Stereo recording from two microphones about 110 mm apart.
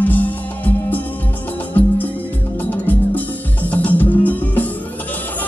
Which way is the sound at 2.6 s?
15° left (ahead or behind).